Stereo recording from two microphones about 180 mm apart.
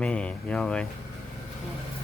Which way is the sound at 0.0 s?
5° left (ahead or behind).